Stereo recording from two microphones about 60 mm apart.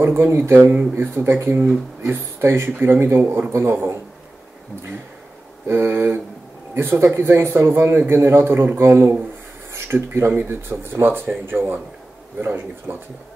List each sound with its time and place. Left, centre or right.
0.0 s speech: right
5.7 s speech: right